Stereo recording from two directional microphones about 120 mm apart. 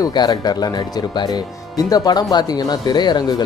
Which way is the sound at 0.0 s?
35° left (ahead or behind).